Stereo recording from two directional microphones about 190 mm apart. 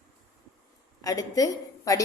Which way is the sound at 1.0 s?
20° left (ahead or behind).